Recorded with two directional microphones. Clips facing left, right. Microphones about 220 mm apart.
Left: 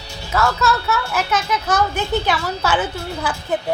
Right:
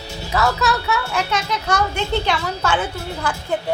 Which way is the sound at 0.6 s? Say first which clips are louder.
Left 1 dB; centre (ahead or behind).